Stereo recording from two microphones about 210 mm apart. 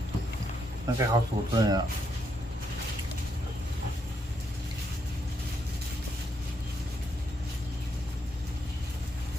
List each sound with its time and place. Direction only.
0.9 s speech: 20° right (ahead or behind)